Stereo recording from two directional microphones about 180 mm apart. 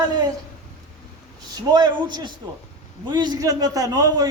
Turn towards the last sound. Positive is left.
turn(degrees=-20)  # may be behind; listen again after turning